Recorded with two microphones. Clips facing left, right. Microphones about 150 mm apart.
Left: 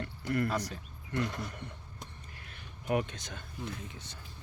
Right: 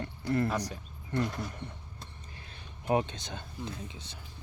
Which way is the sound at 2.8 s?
25° right (ahead or behind).